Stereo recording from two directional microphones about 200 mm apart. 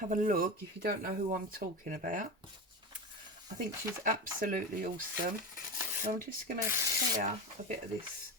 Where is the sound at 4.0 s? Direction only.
45° right (ahead or behind).